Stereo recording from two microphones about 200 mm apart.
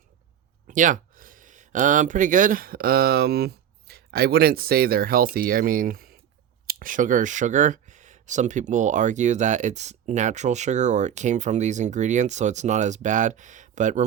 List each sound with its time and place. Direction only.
0.7 s speech: 40° right (ahead or behind)